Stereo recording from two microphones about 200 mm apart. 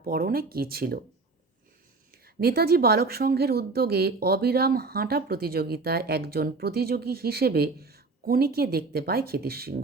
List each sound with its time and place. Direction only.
0.0 s speech: 50° right (ahead or behind)
2.2 s speech: 50° right (ahead or behind)